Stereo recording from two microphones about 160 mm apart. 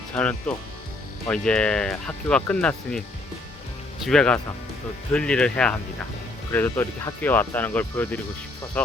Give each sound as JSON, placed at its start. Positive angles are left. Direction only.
{"t": 0.1, "sound": "speech", "side_deg": 5}
{"t": 4.0, "sound": "speech", "side_deg": 5}